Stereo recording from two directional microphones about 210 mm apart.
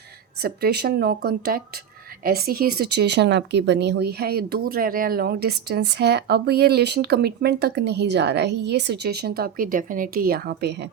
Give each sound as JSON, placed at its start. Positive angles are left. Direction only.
{"t": 0.4, "sound": "speech", "side_deg": -50}